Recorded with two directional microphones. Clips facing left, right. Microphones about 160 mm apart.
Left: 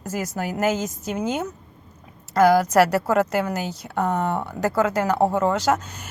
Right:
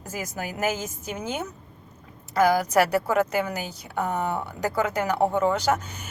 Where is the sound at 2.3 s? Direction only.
10° right (ahead or behind).